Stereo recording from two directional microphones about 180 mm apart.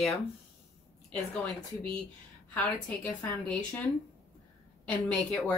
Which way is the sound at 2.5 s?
10° left (ahead or behind).